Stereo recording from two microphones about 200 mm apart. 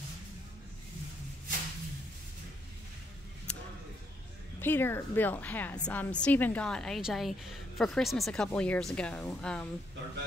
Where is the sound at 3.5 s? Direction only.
5° left (ahead or behind).